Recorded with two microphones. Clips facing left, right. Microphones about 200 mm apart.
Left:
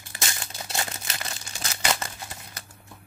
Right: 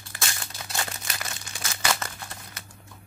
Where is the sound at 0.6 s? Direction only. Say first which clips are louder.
Left 1 dB; 25° left (ahead or behind).